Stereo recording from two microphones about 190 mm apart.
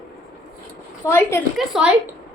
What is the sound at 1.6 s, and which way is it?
Speech, 5° right (ahead or behind).